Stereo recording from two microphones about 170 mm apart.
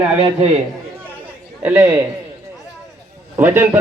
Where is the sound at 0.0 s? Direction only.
35° right (ahead or behind).